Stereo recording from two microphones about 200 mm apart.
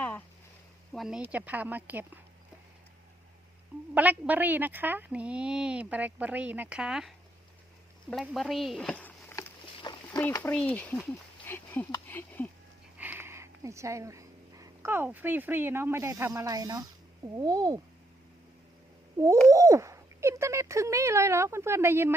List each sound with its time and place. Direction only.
0.9 s a woman's voice: 5° right (ahead or behind)
3.9 s a woman's voice: 10° right (ahead or behind)
8.1 s speech: centre (ahead or behind)
13.0 s a woman's voice: 10° right (ahead or behind)
19.5 s a woman's voice: 15° right (ahead or behind)